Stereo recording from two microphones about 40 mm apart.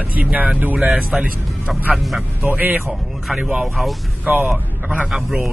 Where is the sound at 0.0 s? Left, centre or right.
Right.